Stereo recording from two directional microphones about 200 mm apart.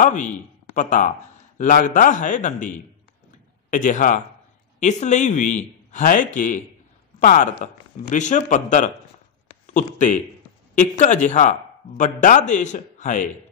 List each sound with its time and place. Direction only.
0.0 s a man's voice: 40° left (ahead or behind)